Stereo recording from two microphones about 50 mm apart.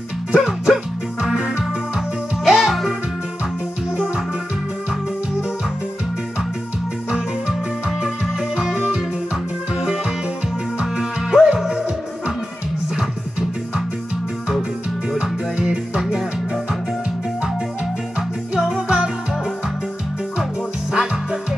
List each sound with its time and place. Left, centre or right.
0.3 s music: centre
1.6 s music: centre
3.9 s music: centre
7.1 s music: centre
12.9 s music: centre
15.1 s music: centre
18.5 s music: centre
20.9 s music: centre